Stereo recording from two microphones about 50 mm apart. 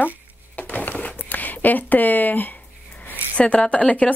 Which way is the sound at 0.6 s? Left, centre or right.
Left.